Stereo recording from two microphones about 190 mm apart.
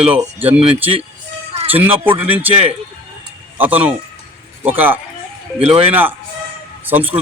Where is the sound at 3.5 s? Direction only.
10° right (ahead or behind).